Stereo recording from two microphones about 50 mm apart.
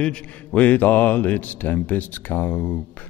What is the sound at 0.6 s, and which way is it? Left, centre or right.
Mantra, left.